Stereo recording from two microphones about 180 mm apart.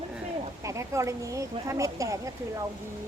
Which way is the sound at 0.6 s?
15° right (ahead or behind).